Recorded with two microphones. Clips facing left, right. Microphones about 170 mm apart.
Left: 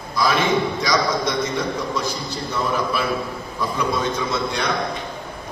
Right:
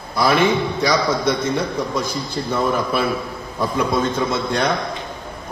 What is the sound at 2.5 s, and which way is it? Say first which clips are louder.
A man's voice: right 3 dB; 50° right (ahead or behind).